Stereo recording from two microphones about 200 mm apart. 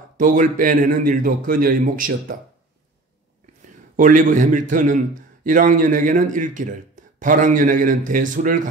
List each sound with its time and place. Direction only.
0.2 s a man's voice: 40° right (ahead or behind)
3.9 s a man's voice: 40° right (ahead or behind)